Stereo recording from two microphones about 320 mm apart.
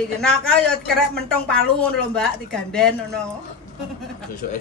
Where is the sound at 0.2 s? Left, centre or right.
Centre.